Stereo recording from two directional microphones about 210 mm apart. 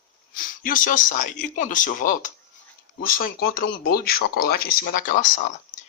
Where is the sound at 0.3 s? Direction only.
40° left (ahead or behind).